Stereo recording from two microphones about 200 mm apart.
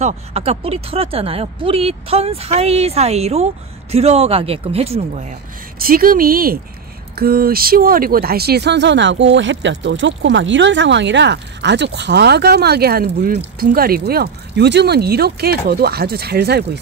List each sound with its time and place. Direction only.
0.0 s speech: 30° right (ahead or behind)
5.8 s speech: 45° right (ahead or behind)